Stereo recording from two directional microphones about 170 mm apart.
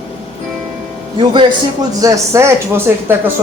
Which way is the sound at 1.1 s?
30° right (ahead or behind).